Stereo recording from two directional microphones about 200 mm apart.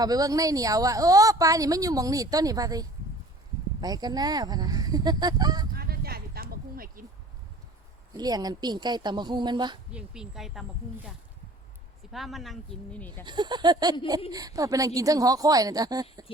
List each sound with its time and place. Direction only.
0.0 s speech: 20° right (ahead or behind)
5.7 s a sound: 50° right (ahead or behind)
8.1 s speech: 20° right (ahead or behind)
9.9 s speech: 5° right (ahead or behind)
12.1 s speech: centre (ahead or behind)
13.2 s speech: 20° right (ahead or behind)